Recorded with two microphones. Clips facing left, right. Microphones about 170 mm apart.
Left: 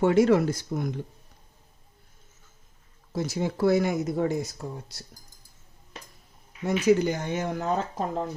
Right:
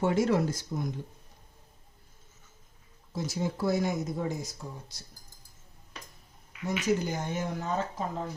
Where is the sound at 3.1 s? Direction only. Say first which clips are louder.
Left 4 dB; 65° left (ahead or behind).